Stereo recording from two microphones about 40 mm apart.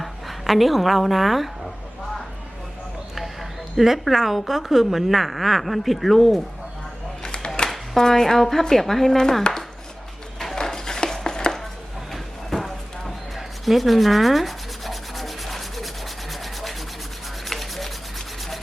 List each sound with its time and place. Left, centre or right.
0.0 s speech: centre
3.8 s speech: centre
7.2 s a sound: centre
7.7 s speech: centre
10.4 s a sound: centre
17.4 s rub: centre